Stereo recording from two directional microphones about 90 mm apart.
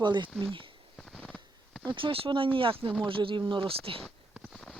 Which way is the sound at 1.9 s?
70° right (ahead or behind).